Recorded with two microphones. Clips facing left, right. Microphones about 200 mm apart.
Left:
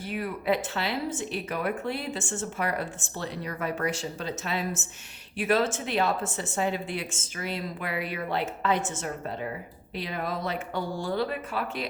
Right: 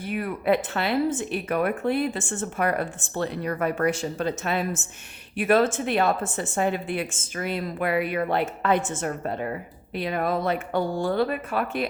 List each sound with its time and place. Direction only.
0.0 s a woman's voice: 55° right (ahead or behind)